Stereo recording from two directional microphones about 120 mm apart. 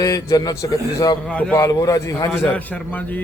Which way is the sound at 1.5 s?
30° left (ahead or behind).